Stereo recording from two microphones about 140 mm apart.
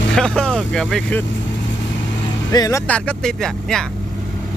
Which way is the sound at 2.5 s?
25° left (ahead or behind).